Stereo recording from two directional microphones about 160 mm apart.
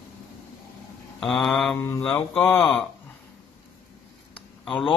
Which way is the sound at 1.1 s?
Centre (ahead or behind).